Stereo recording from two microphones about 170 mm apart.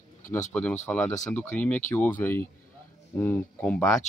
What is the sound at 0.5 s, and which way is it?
Speech, 5° left (ahead or behind).